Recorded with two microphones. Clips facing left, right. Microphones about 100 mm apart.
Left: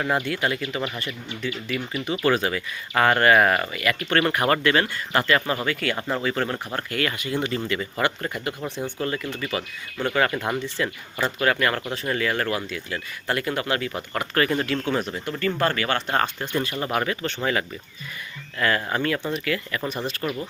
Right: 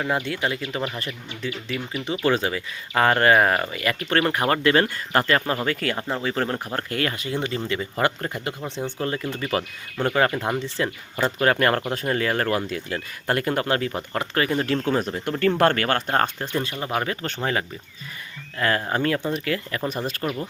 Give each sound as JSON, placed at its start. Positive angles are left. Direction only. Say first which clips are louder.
{"t": 0.3, "sound": "speech", "louder": "left 1 dB", "side_deg": -25}
{"t": 0.9, "sound": "speech", "louder": "even", "side_deg": -35}
{"t": 9.5, "sound": "speech", "louder": "right 3 dB", "side_deg": -40}
{"t": 10.1, "sound": "speech", "louder": "right 1 dB", "side_deg": -25}
{"t": 14.1, "sound": "speech", "louder": "left 2 dB", "side_deg": -20}
{"t": 14.6, "sound": "speech", "louder": "right 2 dB", "side_deg": -35}
{"t": 15.2, "sound": "speech", "louder": "right 5 dB", "side_deg": -60}
{"t": 16.1, "sound": "speech", "louder": "right 1 dB", "side_deg": -35}
{"t": 16.8, "sound": "speech", "louder": "left 1 dB", "side_deg": -20}
{"t": 17.2, "sound": "speech", "louder": "left 1 dB", "side_deg": -40}
{"t": 19.9, "sound": "speech", "louder": "right 1 dB", "side_deg": -5}